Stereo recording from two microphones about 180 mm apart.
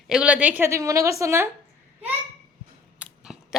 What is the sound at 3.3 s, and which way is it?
Biting, centre (ahead or behind).